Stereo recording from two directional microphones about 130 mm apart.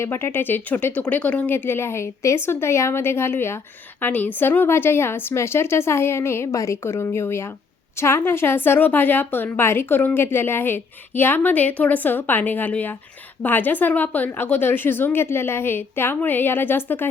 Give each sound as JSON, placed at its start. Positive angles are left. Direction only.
{"t": 0.0, "sound": "a woman's voice", "side_deg": 20}